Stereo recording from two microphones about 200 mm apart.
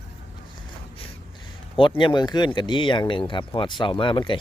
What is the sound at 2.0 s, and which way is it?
Speech, 20° left (ahead or behind).